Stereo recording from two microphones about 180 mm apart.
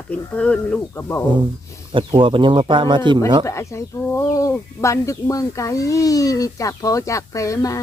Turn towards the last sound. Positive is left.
turn(degrees=20)  # may be behind; listen again after turning